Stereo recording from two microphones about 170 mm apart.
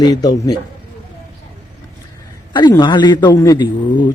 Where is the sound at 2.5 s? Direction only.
25° left (ahead or behind).